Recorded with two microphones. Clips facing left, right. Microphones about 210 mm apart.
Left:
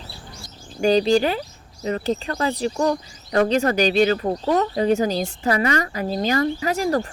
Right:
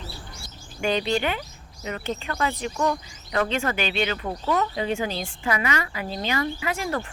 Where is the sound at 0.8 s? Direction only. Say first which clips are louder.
Left 7 dB; 35° left (ahead or behind).